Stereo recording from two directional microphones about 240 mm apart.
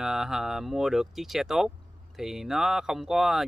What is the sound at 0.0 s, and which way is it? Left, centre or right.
Speech, centre.